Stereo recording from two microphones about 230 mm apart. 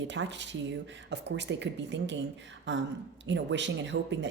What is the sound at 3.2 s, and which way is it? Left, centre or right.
Speech, right.